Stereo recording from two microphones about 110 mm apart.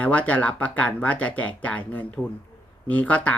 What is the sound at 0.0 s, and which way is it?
Speech, 15° left (ahead or behind).